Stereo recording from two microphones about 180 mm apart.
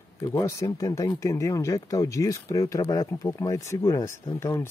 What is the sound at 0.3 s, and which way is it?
Speech, 20° left (ahead or behind).